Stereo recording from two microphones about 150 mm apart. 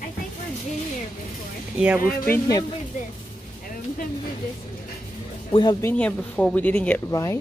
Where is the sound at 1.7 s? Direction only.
5° right (ahead or behind).